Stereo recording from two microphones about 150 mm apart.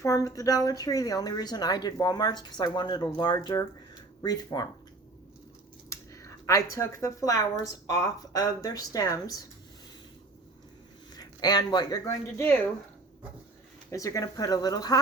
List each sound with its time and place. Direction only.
0.0 s speech: 20° left (ahead or behind)
5.9 s speech: 20° left (ahead or behind)
11.1 s speech: 25° left (ahead or behind)
13.9 s speech: 20° left (ahead or behind)